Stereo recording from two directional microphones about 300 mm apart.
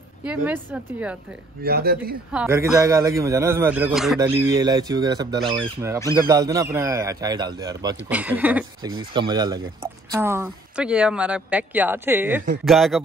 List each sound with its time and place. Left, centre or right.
0.2 s speech: centre
1.6 s speech: right
2.3 s a man's voice: centre